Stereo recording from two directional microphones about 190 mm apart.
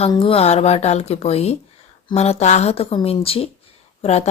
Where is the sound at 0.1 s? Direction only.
30° left (ahead or behind).